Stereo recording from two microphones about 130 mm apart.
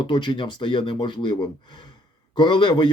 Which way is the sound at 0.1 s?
35° left (ahead or behind).